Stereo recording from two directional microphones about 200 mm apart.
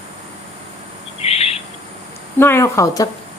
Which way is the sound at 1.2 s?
30° left (ahead or behind).